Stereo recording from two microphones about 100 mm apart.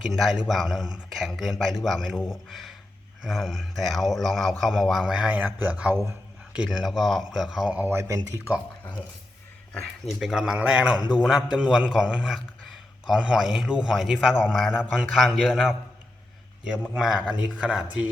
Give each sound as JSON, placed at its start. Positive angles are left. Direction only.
{"t": 0.0, "sound": "a man's voice", "side_deg": 0}
{"t": 7.9, "sound": "speech", "side_deg": -30}
{"t": 10.2, "sound": "a man's voice", "side_deg": -5}
{"t": 17.0, "sound": "speech", "side_deg": -5}